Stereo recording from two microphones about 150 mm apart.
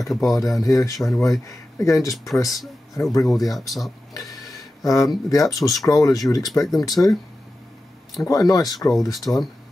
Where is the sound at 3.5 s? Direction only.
Centre (ahead or behind).